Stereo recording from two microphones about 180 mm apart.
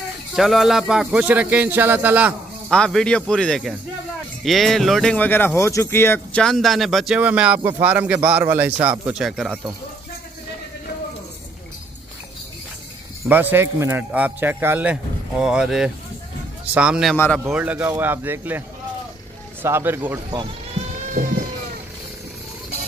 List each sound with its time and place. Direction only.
0.4 s speech: centre (ahead or behind)
2.7 s speech: 5° left (ahead or behind)
13.3 s speech: 10° right (ahead or behind)
19.6 s speech: 10° right (ahead or behind)
20.2 s speech: 25° right (ahead or behind)